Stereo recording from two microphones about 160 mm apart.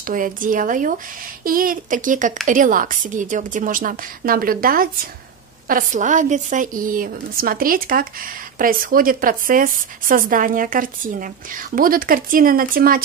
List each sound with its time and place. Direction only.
0.0 s speech: 60° right (ahead or behind)